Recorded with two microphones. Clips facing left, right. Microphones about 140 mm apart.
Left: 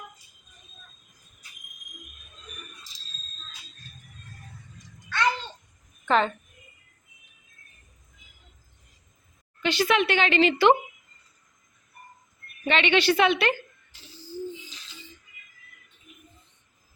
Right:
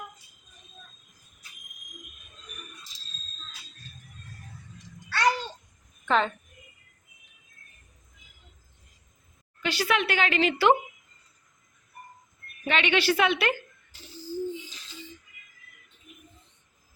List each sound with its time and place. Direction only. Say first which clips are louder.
5.0 s a sound: right 1 dB; 35° right (ahead or behind)
6.1 s a woman's voice: left 2 dB; centre (ahead or behind)
9.6 s speech: left 4 dB; 5° right (ahead or behind)
12.6 s speech: left 3 dB; 5° right (ahead or behind)